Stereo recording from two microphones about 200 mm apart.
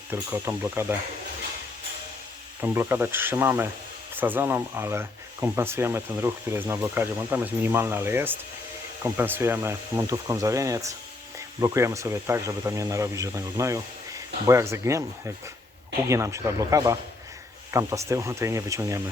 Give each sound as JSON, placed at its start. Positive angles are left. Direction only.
{"t": 0.1, "sound": "speech", "side_deg": -10}
{"t": 2.6, "sound": "speech", "side_deg": -10}